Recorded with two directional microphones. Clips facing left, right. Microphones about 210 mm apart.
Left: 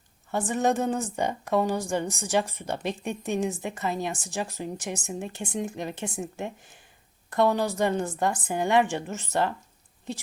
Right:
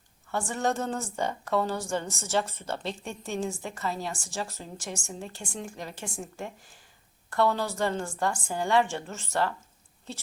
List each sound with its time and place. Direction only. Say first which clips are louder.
0.3 s a woman's voice: left 4 dB; 20° left (ahead or behind)